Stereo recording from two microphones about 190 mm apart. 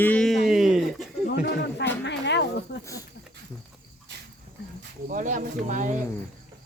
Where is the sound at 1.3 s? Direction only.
65° left (ahead or behind).